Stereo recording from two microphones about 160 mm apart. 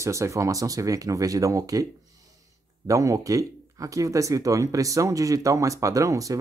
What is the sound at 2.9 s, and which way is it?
Speech, 20° right (ahead or behind).